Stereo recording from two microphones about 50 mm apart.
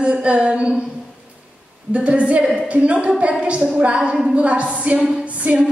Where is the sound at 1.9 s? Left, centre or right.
Right.